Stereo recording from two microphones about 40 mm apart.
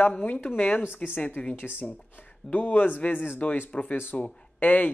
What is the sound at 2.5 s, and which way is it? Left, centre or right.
Speech, left.